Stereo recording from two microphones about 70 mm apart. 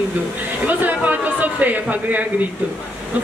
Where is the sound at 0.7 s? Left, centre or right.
Right.